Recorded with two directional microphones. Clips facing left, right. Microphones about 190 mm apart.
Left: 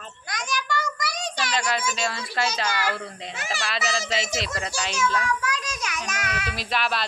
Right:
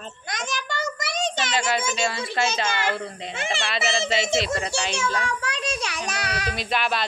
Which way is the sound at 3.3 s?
25° right (ahead or behind).